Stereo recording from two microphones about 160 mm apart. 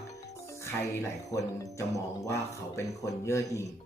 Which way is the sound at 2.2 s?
20° left (ahead or behind).